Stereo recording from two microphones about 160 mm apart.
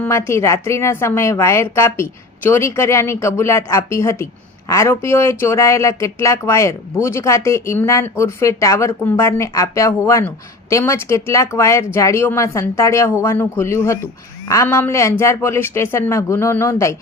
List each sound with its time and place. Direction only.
0.0 s a woman's voice: 15° left (ahead or behind)